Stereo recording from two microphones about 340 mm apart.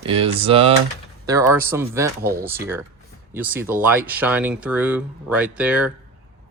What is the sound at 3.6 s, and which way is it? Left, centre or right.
Speech, centre.